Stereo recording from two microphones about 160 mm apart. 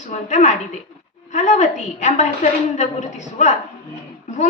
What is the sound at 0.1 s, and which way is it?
A woman's voice, 50° left (ahead or behind).